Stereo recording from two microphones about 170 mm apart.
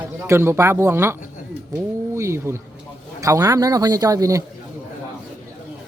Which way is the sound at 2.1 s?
15° right (ahead or behind).